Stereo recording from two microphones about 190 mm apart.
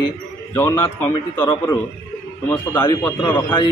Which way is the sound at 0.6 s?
25° left (ahead or behind).